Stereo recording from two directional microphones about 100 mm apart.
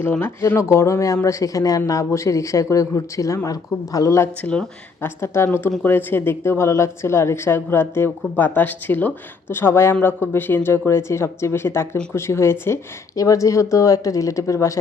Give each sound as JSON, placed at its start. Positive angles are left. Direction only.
{"t": 0.0, "sound": "a woman's voice", "side_deg": 20}